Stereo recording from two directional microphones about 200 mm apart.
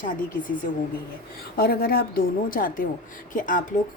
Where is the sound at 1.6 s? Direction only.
50° left (ahead or behind).